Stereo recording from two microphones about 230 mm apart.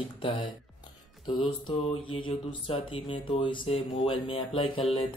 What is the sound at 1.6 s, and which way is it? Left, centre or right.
Speech, left.